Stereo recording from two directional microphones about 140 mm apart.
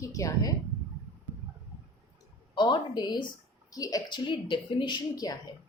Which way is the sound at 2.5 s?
35° left (ahead or behind).